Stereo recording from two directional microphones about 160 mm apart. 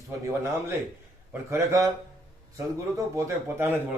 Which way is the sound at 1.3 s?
15° right (ahead or behind).